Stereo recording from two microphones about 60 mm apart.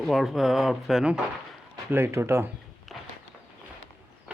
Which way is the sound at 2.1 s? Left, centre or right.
Right.